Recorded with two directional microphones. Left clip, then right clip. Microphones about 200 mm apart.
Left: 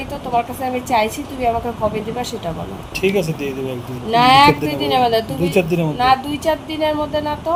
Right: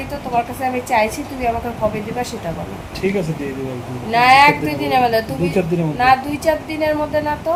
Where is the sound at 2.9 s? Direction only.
45° left (ahead or behind).